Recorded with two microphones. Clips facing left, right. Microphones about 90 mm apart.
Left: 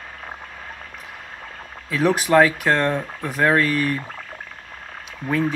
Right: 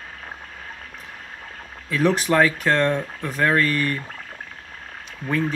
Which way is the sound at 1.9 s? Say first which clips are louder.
Left 2 dB; 10° left (ahead or behind).